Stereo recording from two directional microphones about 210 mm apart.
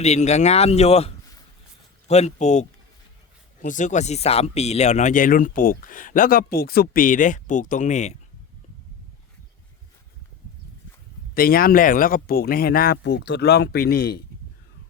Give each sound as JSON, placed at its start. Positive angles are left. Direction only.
{"t": 0.0, "sound": "speech", "side_deg": 30}
{"t": 11.3, "sound": "speech", "side_deg": 45}